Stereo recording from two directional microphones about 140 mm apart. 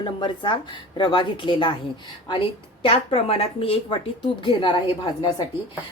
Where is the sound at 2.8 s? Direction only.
45° left (ahead or behind).